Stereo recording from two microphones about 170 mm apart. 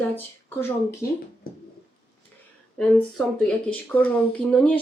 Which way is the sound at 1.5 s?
65° left (ahead or behind).